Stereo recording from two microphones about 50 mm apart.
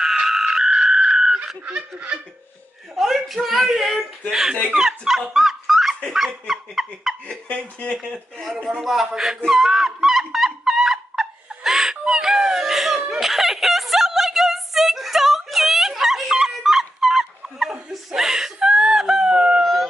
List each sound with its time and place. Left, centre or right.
0.0 s frog: centre
1.7 s a sound: right
2.9 s speech: centre
5.3 s dog: centre
6.1 s speech: centre
7.2 s speech: left
8.0 s speech: centre
8.8 s speech: centre
9.5 s a sound: centre
17.9 s snicker: centre